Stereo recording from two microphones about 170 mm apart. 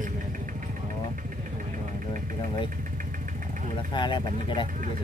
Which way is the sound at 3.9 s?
25° left (ahead or behind).